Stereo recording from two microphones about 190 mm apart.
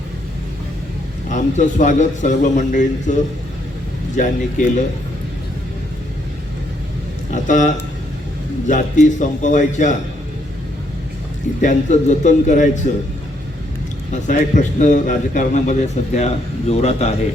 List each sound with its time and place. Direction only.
1.3 s a man's voice: 40° left (ahead or behind)
7.3 s a man's voice: 40° left (ahead or behind)
11.6 s a man's voice: 40° left (ahead or behind)
14.1 s a man's voice: 40° left (ahead or behind)